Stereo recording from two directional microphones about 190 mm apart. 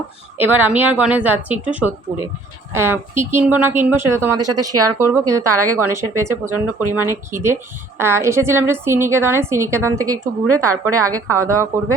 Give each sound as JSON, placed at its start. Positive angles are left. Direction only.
{"t": 0.3, "sound": "speech", "side_deg": -10}